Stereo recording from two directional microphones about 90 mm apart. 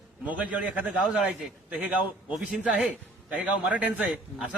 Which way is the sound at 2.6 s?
15° right (ahead or behind).